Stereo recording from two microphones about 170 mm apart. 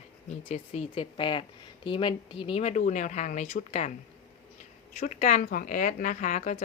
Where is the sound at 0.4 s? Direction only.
35° left (ahead or behind).